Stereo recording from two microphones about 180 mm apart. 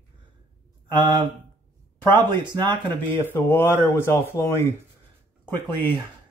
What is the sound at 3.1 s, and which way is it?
Speech, 10° left (ahead or behind).